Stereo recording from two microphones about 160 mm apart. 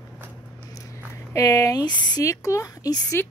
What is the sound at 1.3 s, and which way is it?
Speech, 20° left (ahead or behind).